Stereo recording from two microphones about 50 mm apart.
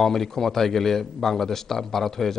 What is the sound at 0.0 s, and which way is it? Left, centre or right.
A man's voice, centre.